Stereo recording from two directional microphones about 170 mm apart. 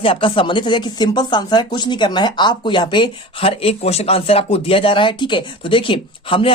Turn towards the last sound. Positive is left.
turn(degrees=30)  # may be behind; listen again after turning